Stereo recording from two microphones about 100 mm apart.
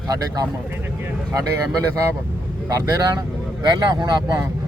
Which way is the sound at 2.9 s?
40° right (ahead or behind).